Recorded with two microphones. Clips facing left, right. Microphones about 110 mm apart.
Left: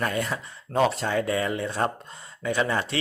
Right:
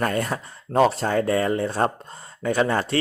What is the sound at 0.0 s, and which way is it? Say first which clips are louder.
A man's voice: right 3 dB; 45° right (ahead or behind).